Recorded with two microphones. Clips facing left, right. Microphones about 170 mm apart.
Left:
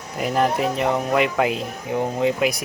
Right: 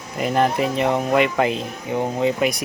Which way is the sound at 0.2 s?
Centre (ahead or behind).